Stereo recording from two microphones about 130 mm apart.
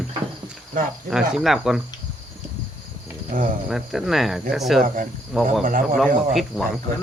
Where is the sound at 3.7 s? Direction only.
Centre (ahead or behind).